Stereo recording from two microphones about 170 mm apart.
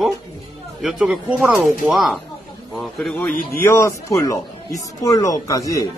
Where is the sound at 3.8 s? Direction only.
20° left (ahead or behind).